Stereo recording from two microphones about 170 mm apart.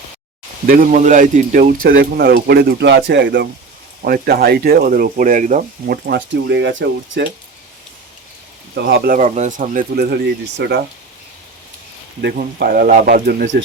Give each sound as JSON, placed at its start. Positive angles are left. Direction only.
{"t": 0.7, "sound": "speech", "side_deg": -50}
{"t": 4.0, "sound": "speech", "side_deg": -65}
{"t": 8.7, "sound": "speech", "side_deg": -80}
{"t": 10.6, "sound": "speech", "side_deg": -80}
{"t": 12.5, "sound": "speech", "side_deg": -65}